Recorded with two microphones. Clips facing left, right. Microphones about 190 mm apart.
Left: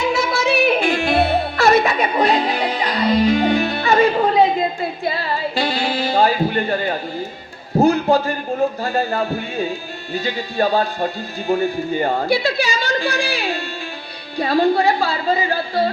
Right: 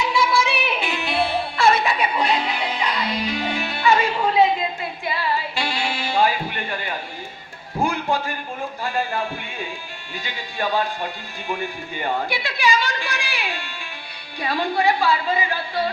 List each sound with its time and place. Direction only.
0.0 s music: 45° left (ahead or behind)
7.8 s a sound: 40° left (ahead or behind)
8.8 s speech: 40° left (ahead or behind)